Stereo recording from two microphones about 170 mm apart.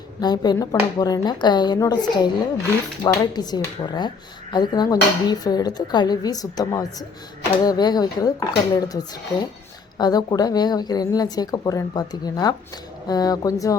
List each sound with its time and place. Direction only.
0.2 s a woman's voice: 25° left (ahead or behind)
10.0 s a woman's voice: 25° left (ahead or behind)